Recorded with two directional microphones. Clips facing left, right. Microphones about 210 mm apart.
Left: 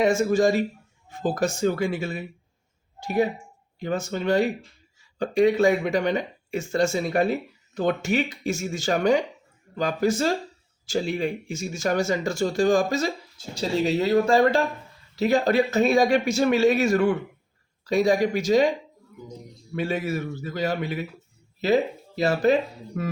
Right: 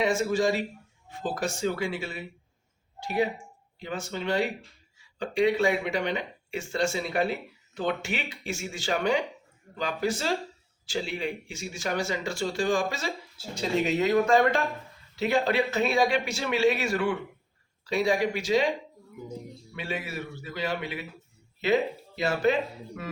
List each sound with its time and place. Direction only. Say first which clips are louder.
0.0 s speech: left 5 dB; 45° left (ahead or behind)
19.7 s speech: left 8 dB; 40° left (ahead or behind)